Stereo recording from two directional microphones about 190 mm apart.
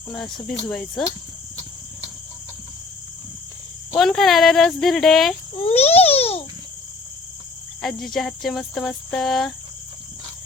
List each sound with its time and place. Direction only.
0.1 s cricket: centre (ahead or behind)
3.9 s cricket: centre (ahead or behind)
5.6 s a sound: 30° left (ahead or behind)
7.8 s cricket: centre (ahead or behind)